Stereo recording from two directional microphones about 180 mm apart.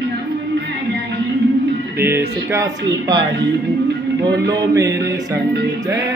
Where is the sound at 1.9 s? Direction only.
15° right (ahead or behind).